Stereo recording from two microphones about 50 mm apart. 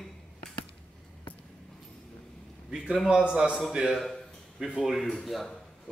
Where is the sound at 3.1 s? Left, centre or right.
Centre.